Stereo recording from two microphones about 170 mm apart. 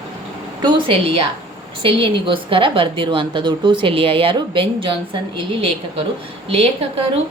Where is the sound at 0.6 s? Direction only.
30° right (ahead or behind).